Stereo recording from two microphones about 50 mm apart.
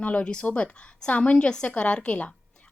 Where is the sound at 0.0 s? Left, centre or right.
Left.